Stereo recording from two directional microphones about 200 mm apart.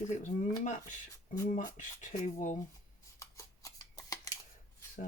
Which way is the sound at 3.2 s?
15° left (ahead or behind).